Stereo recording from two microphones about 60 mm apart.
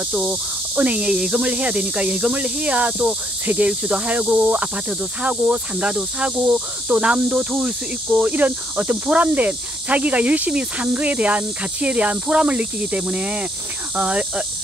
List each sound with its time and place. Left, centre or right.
0.1 s speech: centre
1.1 s speech: centre
1.4 s cricket: right